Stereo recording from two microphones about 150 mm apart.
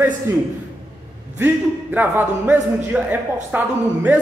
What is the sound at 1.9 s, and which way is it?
Speech, 10° right (ahead or behind).